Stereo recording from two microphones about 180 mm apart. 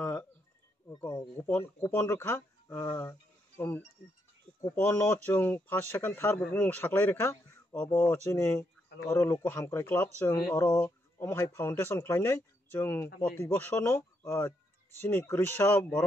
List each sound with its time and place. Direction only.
0.0 s a sound: 10° left (ahead or behind)
0.8 s speech: 20° left (ahead or behind)
1.5 s speech: 10° left (ahead or behind)